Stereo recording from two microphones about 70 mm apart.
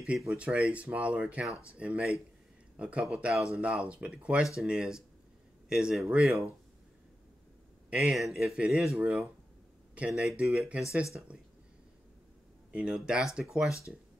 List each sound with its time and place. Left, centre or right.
0.3 s speech: centre
1.5 s speech: left
1.8 s speech: centre
7.9 s speech: centre
8.2 s speech: centre
9.0 s speech: centre
9.9 s speech: centre
12.7 s speech: centre
13.7 s speech: left